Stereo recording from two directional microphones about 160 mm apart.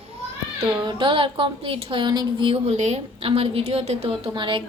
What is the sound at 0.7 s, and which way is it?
Speech, 30° right (ahead or behind).